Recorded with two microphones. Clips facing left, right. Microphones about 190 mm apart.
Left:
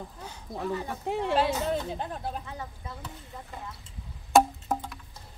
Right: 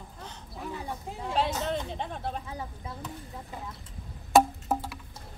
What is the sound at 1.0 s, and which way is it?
Speech, 70° left (ahead or behind).